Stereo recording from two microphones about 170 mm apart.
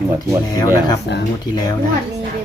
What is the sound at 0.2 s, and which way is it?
Speech, 20° left (ahead or behind).